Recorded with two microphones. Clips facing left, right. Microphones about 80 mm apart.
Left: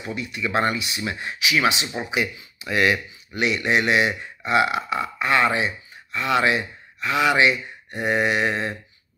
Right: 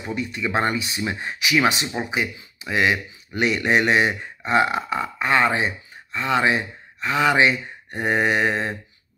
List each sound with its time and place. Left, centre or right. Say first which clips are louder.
0.1 s speech: right 1 dB; right
2.0 s speech: even; right
3.3 s speech: right 2 dB; right